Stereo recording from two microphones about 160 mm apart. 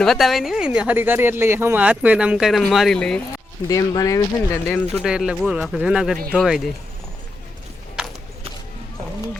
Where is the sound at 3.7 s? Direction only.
20° left (ahead or behind).